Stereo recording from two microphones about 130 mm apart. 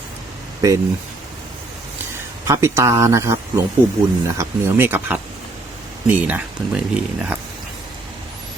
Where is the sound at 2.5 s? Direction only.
20° right (ahead or behind).